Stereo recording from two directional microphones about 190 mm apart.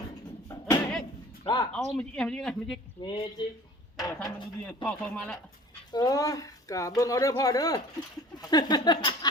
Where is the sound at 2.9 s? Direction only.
25° left (ahead or behind).